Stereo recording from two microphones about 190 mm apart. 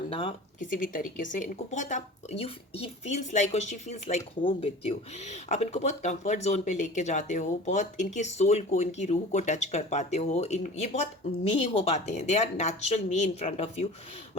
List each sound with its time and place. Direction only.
0.1 s speech: 30° left (ahead or behind)
0.6 s speech: 45° left (ahead or behind)